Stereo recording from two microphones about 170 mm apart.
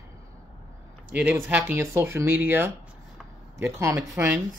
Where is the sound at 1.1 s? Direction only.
10° right (ahead or behind).